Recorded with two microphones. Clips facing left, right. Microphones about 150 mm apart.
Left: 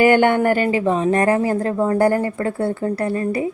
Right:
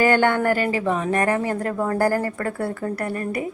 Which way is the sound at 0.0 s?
15° left (ahead or behind).